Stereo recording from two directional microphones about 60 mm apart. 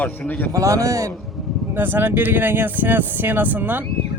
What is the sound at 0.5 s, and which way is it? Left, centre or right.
Speech, right.